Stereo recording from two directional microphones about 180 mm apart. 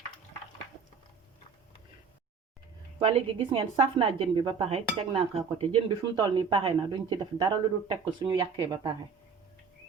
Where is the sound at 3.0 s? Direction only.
35° right (ahead or behind).